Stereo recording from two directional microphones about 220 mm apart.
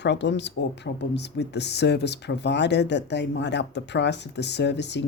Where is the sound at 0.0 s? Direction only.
50° left (ahead or behind).